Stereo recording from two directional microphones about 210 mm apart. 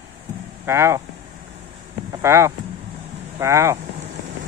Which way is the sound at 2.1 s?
15° right (ahead or behind).